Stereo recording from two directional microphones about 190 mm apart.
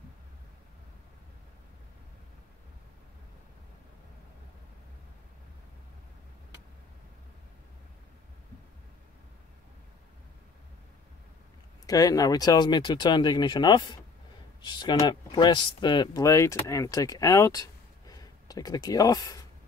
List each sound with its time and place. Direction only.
11.8 s speech: 20° left (ahead or behind)